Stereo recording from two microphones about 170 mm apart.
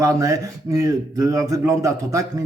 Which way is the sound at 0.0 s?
20° right (ahead or behind).